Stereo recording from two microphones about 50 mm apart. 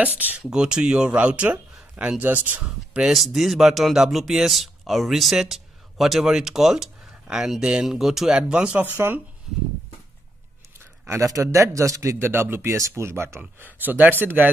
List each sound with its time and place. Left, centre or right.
0.0 s speech: right
0.5 s speech: centre; by 2.6 s right
3.1 s speech: centre
9.0 s speech: right
11.1 s a man's voice: right
12.2 s speech: right
12.7 s speech: right
13.7 s speech: right